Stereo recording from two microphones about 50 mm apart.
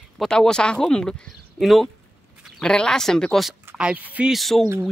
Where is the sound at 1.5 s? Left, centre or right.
Centre.